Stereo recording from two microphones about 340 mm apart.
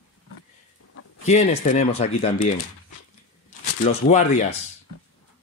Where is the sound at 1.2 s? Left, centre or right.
Centre.